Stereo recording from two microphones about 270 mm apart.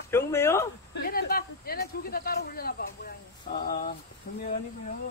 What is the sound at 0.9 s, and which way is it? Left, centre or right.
A man's voice, left.